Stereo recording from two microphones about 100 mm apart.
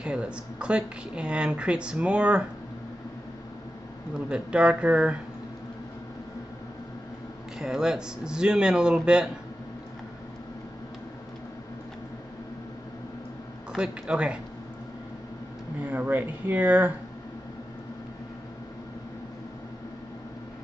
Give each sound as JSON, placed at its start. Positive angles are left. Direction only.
{"t": 0.0, "sound": "speech", "side_deg": -10}
{"t": 4.1, "sound": "speech", "side_deg": -10}
{"t": 7.5, "sound": "speech", "side_deg": -5}
{"t": 13.7, "sound": "speech", "side_deg": -10}
{"t": 15.8, "sound": "speech", "side_deg": -15}